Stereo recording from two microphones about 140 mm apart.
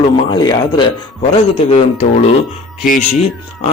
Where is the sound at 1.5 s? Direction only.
55° left (ahead or behind).